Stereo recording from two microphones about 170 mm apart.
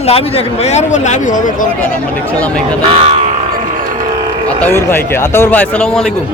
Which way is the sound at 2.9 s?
35° right (ahead or behind).